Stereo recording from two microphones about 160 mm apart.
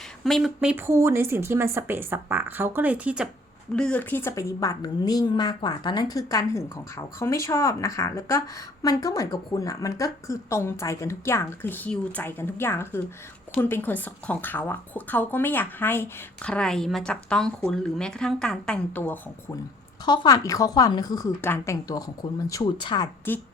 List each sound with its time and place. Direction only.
0.3 s speech: centre (ahead or behind)
3.8 s a woman's voice: 5° left (ahead or behind)
20.1 s a woman's voice: 25° left (ahead or behind)
23.3 s speech: 10° left (ahead or behind)